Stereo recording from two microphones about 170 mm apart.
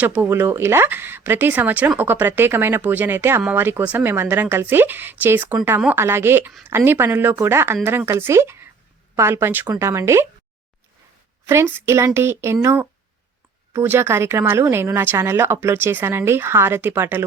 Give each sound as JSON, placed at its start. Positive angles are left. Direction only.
{"t": 0.0, "sound": "speech", "side_deg": -15}
{"t": 11.4, "sound": "speech", "side_deg": -15}